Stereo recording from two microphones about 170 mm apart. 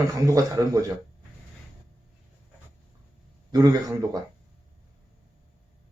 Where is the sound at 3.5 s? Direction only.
20° right (ahead or behind).